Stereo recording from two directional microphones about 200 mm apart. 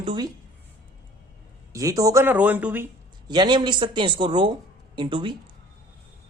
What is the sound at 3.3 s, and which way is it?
A woman's voice, 20° right (ahead or behind).